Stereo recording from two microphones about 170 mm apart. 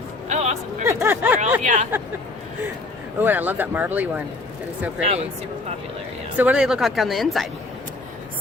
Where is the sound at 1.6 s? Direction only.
45° right (ahead or behind).